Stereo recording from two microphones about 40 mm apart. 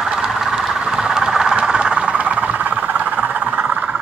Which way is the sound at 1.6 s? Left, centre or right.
Right.